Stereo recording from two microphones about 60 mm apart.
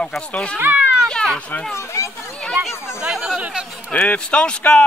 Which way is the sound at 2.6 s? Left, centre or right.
Centre.